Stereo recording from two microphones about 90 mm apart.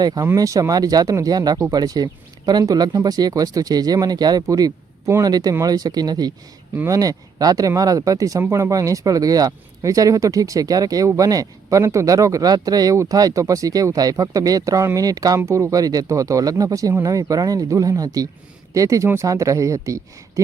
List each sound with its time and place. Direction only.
0.0 s speech: 45° right (ahead or behind)
15.4 s speech: 30° right (ahead or behind)